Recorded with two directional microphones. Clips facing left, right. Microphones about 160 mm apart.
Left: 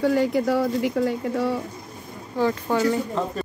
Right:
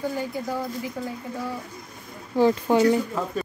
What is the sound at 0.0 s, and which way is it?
Speech, 75° left (ahead or behind).